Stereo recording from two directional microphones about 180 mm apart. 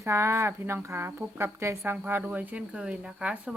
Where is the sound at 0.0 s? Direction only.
15° right (ahead or behind).